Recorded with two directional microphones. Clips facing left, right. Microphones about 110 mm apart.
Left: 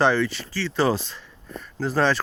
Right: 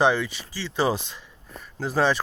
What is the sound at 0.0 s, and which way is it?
Speech, 15° right (ahead or behind).